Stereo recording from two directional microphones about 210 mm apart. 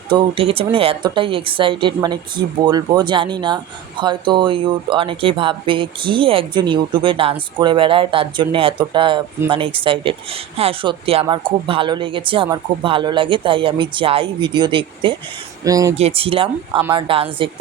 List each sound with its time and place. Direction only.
0.1 s speech: 25° right (ahead or behind)
16.0 s speech: 30° right (ahead or behind)